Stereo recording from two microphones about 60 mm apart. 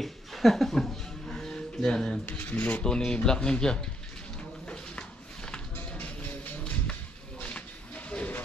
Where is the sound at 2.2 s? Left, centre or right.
Left.